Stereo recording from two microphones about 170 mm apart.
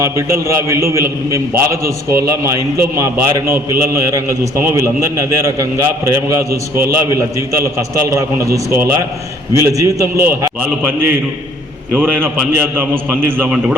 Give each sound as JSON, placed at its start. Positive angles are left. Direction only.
{"t": 0.0, "sound": "a man's voice", "side_deg": -15}
{"t": 11.9, "sound": "a man's voice", "side_deg": -10}